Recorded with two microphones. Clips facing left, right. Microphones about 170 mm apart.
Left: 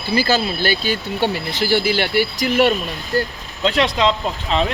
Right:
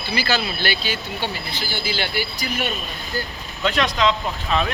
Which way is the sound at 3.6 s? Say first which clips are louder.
Left 3 dB; 25° left (ahead or behind).